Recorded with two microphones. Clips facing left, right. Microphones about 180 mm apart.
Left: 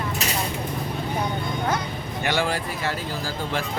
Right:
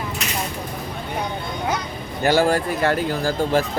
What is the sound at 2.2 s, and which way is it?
Speech, 40° right (ahead or behind).